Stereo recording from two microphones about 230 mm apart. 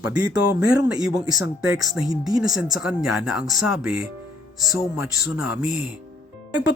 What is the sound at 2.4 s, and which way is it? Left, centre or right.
Speech, centre.